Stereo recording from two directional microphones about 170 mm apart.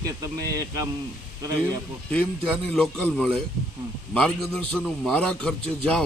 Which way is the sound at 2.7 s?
5° left (ahead or behind).